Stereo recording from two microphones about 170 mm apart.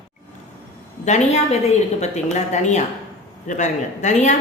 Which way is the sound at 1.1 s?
45° left (ahead or behind).